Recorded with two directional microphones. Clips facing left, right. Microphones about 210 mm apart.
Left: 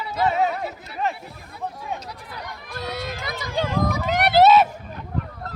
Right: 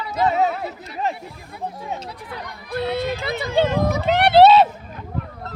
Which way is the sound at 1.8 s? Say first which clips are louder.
Right 2 dB; 25° right (ahead or behind).